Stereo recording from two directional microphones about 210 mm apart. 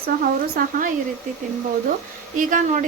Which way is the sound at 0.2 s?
45° right (ahead or behind).